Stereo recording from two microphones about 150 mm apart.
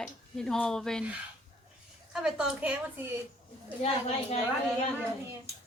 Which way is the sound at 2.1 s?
5° right (ahead or behind).